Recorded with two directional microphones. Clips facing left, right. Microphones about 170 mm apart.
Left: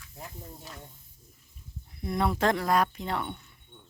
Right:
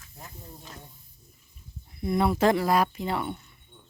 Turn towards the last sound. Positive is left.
turn(degrees=-5)  # may be behind; listen again after turning